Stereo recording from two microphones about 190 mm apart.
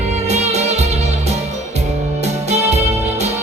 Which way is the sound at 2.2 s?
35° right (ahead or behind).